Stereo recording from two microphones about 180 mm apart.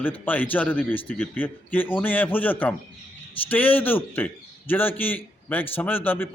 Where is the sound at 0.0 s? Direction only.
10° left (ahead or behind).